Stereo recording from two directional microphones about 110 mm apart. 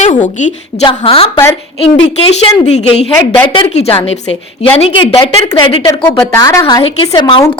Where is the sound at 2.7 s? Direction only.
75° left (ahead or behind).